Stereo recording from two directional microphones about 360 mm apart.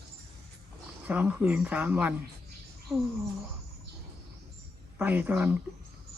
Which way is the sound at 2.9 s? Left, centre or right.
Centre.